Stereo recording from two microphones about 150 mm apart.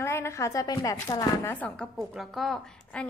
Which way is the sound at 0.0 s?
20° left (ahead or behind).